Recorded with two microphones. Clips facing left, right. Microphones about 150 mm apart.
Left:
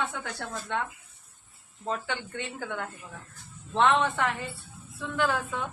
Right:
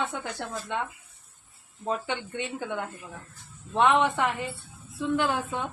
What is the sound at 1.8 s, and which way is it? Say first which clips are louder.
A woman's voice: right 2 dB; 20° right (ahead or behind).